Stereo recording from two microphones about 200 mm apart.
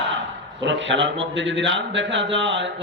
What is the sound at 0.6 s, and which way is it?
A man's voice, 65° right (ahead or behind).